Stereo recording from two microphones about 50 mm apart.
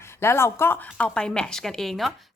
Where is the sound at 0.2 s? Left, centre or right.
Left.